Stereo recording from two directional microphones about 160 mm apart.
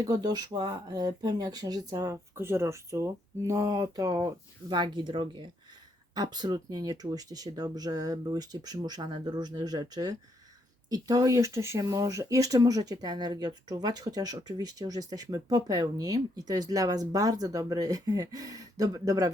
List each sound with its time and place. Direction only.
0.0 s speech: 25° right (ahead or behind)